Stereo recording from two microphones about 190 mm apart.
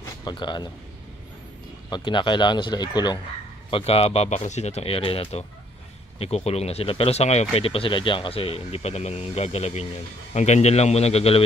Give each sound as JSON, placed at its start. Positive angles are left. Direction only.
{"t": 0.2, "sound": "speech", "side_deg": 25}
{"t": 1.9, "sound": "speech", "side_deg": 25}